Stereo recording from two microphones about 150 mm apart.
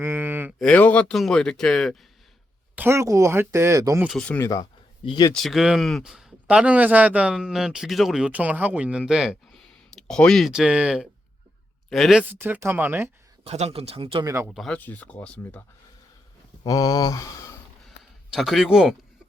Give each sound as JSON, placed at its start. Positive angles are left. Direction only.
{"t": 0.0, "sound": "a sound", "side_deg": -15}
{"t": 0.6, "sound": "speech", "side_deg": 10}
{"t": 2.7, "sound": "speech", "side_deg": -15}
{"t": 4.4, "sound": "speech", "side_deg": 20}
{"t": 5.3, "sound": "speech", "side_deg": 0}
{"t": 12.3, "sound": "speech", "side_deg": -15}
{"t": 13.4, "sound": "speech", "side_deg": -45}
{"t": 14.5, "sound": "speech", "side_deg": 0}
{"t": 16.6, "sound": "speech", "side_deg": 25}
{"t": 17.8, "sound": "a sound", "side_deg": 0}